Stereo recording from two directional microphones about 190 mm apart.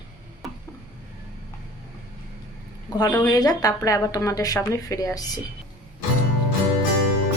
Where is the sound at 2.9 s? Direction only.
20° left (ahead or behind).